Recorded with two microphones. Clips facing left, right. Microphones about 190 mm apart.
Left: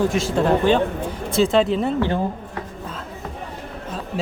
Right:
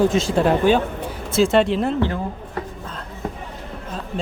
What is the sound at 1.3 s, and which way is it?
Speech, centre (ahead or behind).